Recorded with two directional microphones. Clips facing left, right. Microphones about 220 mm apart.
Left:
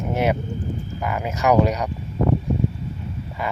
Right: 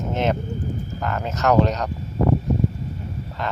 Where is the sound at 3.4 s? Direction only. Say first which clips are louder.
Left 1 dB; 10° left (ahead or behind).